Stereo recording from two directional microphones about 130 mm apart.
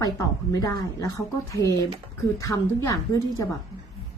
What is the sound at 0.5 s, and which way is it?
Speech, 30° left (ahead or behind).